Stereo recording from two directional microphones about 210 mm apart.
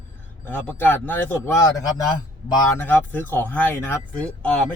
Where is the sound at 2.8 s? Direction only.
10° left (ahead or behind).